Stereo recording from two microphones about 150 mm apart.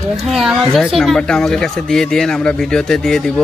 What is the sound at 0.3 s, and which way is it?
A woman's voice, centre (ahead or behind).